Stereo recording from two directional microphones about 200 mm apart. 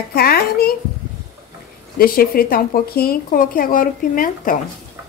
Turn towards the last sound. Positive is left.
turn(degrees=45)  # may be behind; listen again after turning